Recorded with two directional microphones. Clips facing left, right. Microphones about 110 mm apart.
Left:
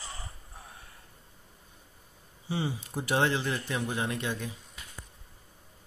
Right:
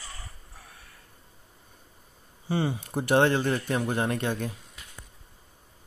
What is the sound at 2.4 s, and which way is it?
Speech, 50° right (ahead or behind).